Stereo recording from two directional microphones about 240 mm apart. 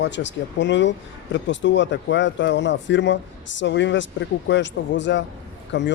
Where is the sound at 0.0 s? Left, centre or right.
Left.